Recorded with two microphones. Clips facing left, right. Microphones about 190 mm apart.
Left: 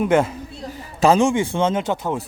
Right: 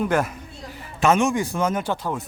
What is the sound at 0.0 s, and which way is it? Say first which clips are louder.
Speech: left 5 dB; 25° left (ahead or behind).